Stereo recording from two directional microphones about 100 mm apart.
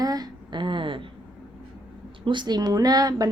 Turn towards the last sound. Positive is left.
turn(degrees=-40)  # may be behind; listen again after turning